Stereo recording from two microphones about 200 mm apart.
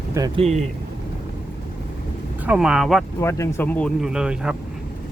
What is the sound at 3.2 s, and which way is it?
Speech, 15° left (ahead or behind).